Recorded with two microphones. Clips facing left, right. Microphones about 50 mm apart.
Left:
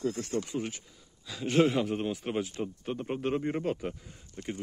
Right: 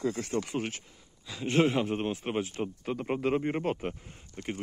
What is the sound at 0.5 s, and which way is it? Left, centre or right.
Speech, right.